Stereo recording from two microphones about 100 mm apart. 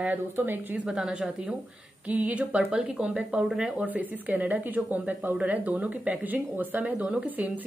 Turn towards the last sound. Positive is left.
turn(degrees=-15)  # may be behind; listen again after turning